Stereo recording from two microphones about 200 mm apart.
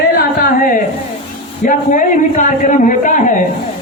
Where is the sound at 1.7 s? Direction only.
40° left (ahead or behind).